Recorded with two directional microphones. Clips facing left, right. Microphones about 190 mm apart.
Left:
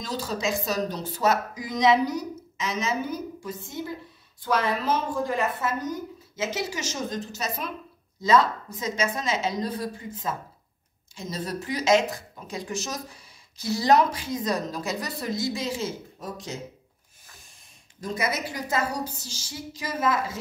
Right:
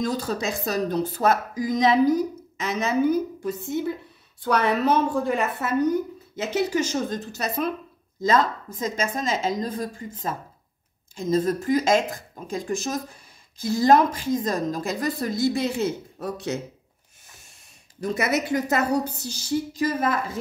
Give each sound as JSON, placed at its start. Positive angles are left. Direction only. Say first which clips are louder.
{"t": 0.0, "sound": "a woman's voice", "louder": "right 3 dB", "side_deg": -55}
{"t": 18.1, "sound": "a woman's voice", "louder": "right 6 dB", "side_deg": -65}